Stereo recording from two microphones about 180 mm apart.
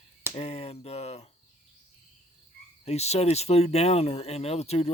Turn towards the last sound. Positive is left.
turn(degrees=35)  # may be behind; listen again after turning